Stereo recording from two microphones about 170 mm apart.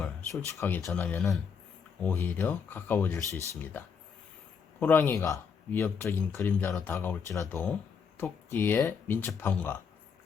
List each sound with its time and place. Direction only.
0.0 s speech: 15° left (ahead or behind)
4.8 s speech: 10° left (ahead or behind)